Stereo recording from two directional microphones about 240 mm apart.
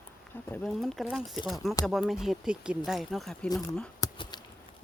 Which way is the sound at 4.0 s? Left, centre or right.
Centre.